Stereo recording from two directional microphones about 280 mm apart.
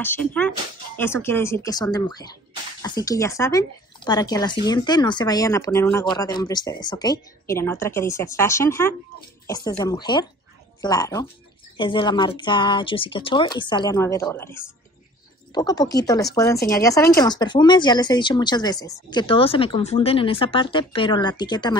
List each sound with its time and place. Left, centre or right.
0.0 s speech: centre
16.5 s speech: left
16.8 s speech: centre